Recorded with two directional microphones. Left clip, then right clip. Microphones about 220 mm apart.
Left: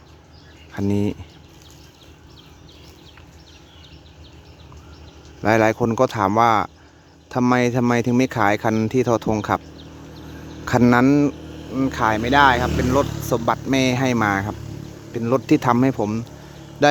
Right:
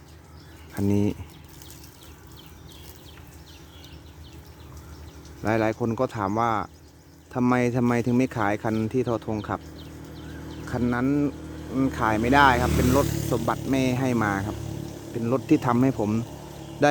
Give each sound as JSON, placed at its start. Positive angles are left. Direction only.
{"t": 0.7, "sound": "speech", "side_deg": 0}
{"t": 5.4, "sound": "speech", "side_deg": 10}
{"t": 10.4, "sound": "speech", "side_deg": 25}
{"t": 11.3, "sound": "a sound", "side_deg": 30}
{"t": 11.7, "sound": "speech", "side_deg": 0}
{"t": 13.1, "sound": "snake", "side_deg": -50}
{"t": 13.3, "sound": "speech", "side_deg": 5}